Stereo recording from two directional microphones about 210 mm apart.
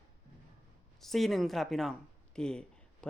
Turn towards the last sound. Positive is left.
turn(degrees=5)  # may be behind; listen again after turning